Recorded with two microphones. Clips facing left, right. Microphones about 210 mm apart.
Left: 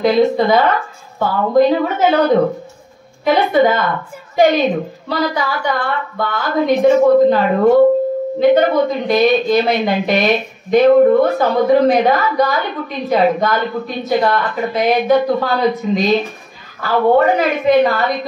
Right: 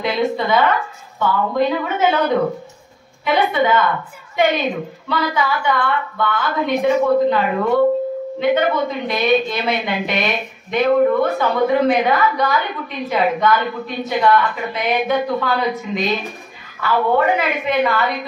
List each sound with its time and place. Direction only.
0.0 s speech: 40° left (ahead or behind)